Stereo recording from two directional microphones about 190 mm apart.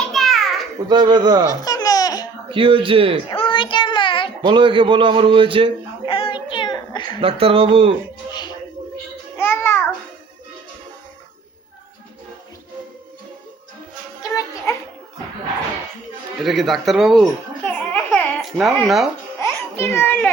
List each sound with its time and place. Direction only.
0.1 s a sound: centre (ahead or behind)
0.9 s a man's voice: 25° right (ahead or behind)
1.5 s baby laughter: 20° left (ahead or behind)
2.5 s a man's voice: 25° right (ahead or behind)
3.2 s child singing: 30° left (ahead or behind)
4.4 s a man's voice: 25° right (ahead or behind)
6.1 s child singing: 30° left (ahead or behind)
7.2 s a man's voice: 30° right (ahead or behind)
8.3 s music: 20° left (ahead or behind)
9.4 s babbling: 10° left (ahead or behind)
16.4 s speech: centre (ahead or behind)
17.7 s babbling: 5° left (ahead or behind)
19.4 s a sound: 15° left (ahead or behind)